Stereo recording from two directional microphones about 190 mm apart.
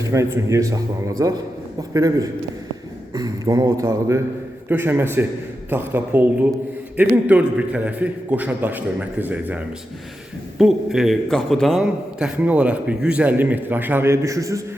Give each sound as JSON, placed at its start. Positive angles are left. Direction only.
{"t": 0.0, "sound": "a man's voice", "side_deg": -15}